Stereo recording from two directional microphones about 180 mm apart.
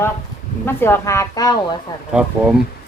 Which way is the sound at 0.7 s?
15° left (ahead or behind).